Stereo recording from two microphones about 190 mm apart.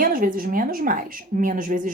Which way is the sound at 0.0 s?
50° right (ahead or behind).